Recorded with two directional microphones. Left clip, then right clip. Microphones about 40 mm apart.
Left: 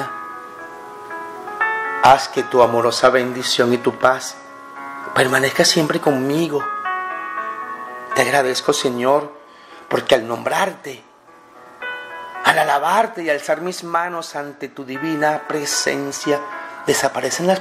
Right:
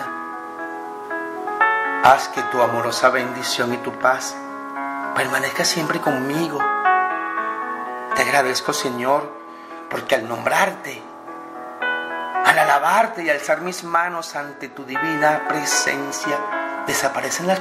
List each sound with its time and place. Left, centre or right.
1.6 s music: right
2.1 s speech: left
4.7 s music: right
5.1 s speech: left
6.6 s music: right
8.1 s speech: left
12.4 s speech: left